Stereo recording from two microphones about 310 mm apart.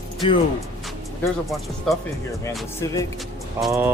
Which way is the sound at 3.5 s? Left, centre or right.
Centre.